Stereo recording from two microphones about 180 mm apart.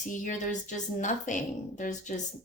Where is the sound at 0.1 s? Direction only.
45° left (ahead or behind).